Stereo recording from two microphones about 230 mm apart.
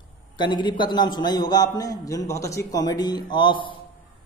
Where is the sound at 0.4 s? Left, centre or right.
Centre.